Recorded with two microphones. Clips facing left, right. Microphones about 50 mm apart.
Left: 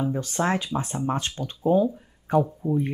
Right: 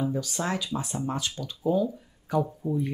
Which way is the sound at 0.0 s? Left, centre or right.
Left.